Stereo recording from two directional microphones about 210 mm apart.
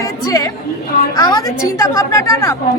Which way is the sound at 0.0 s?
15° left (ahead or behind).